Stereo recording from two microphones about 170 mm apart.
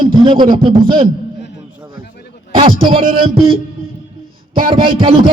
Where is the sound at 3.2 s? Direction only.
30° right (ahead or behind).